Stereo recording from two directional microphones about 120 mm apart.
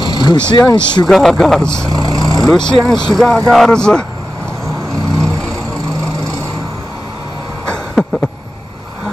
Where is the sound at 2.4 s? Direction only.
5° left (ahead or behind).